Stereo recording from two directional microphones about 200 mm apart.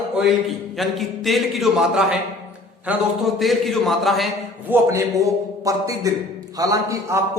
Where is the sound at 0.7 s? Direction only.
Centre (ahead or behind).